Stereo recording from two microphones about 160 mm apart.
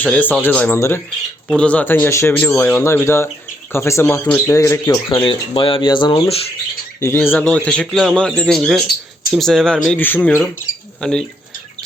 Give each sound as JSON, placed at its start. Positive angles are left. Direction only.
{"t": 0.0, "sound": "speech", "side_deg": 10}
{"t": 5.0, "sound": "speech", "side_deg": 30}
{"t": 7.0, "sound": "a man's voice", "side_deg": 15}